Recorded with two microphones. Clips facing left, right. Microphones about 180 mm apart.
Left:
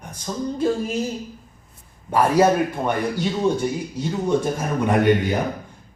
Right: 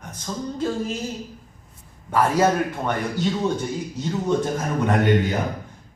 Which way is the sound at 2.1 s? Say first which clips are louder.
Left 3 dB; 10° left (ahead or behind).